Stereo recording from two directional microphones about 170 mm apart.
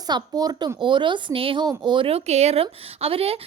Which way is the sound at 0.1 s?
25° right (ahead or behind).